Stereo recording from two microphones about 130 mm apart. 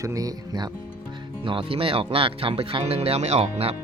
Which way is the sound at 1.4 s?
45° right (ahead or behind).